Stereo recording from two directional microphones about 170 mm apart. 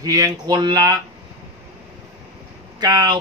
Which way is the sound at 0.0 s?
20° right (ahead or behind).